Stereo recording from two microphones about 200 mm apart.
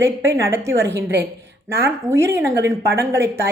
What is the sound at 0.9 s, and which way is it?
Speech, 55° right (ahead or behind).